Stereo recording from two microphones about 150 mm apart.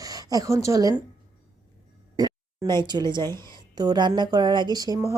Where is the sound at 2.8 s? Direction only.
30° right (ahead or behind).